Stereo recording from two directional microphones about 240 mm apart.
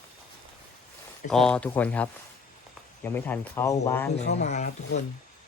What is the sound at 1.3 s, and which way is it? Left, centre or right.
Speech, centre.